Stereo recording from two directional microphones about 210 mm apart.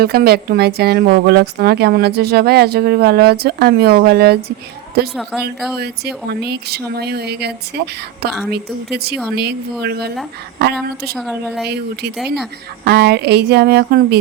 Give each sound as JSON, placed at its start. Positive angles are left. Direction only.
{"t": 0.0, "sound": "speech", "side_deg": -45}
{"t": 5.7, "sound": "speech", "side_deg": -50}
{"t": 11.2, "sound": "speech", "side_deg": 5}
{"t": 12.8, "sound": "speech", "side_deg": -55}